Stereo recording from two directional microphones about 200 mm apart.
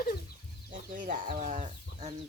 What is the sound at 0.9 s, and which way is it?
Chicken, 40° right (ahead or behind).